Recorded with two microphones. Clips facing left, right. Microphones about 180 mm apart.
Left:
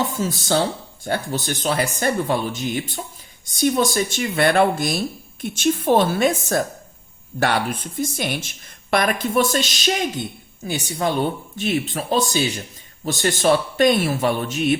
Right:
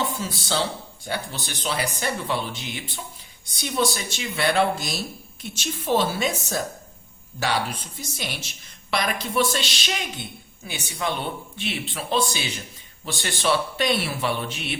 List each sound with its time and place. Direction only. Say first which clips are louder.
0.2 s speech: left 6 dB; 45° left (ahead or behind)